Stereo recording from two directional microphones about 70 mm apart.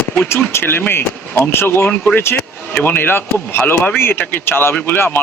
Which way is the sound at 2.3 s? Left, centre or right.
Left.